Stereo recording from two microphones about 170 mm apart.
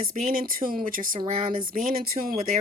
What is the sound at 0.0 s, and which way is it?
Speech, 55° right (ahead or behind).